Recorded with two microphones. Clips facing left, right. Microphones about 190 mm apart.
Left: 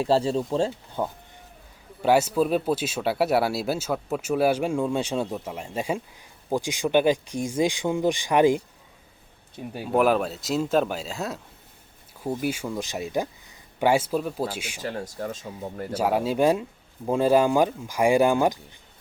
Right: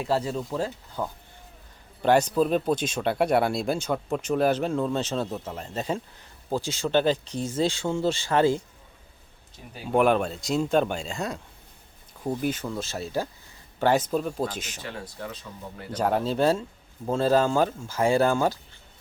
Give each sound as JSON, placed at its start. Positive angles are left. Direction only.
{"t": 0.0, "sound": "speech", "side_deg": 30}
{"t": 2.0, "sound": "speech", "side_deg": 5}
{"t": 9.8, "sound": "speech", "side_deg": 0}
{"t": 14.8, "sound": "speech", "side_deg": 40}
{"t": 15.9, "sound": "speech", "side_deg": 10}